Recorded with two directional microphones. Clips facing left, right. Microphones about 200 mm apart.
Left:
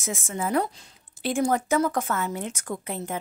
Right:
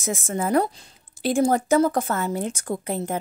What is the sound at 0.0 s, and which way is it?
A woman's voice, 40° right (ahead or behind).